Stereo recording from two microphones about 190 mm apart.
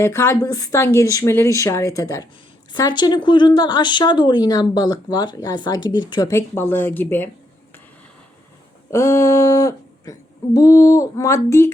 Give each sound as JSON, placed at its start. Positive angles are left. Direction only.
{"t": 0.0, "sound": "speech", "side_deg": 15}
{"t": 8.9, "sound": "speech", "side_deg": 15}